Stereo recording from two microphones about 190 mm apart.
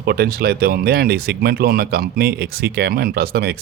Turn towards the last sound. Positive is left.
turn(degrees=-55)  # may be behind; listen again after turning